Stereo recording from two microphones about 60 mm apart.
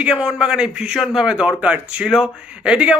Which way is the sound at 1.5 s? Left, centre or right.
Right.